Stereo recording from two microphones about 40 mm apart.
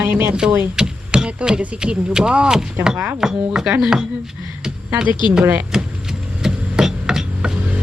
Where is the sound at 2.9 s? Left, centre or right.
Right.